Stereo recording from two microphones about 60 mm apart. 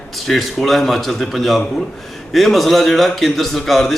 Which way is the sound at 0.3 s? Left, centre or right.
Centre.